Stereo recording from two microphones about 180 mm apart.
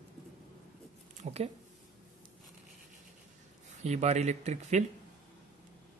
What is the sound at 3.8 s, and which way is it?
A man's voice, 40° right (ahead or behind).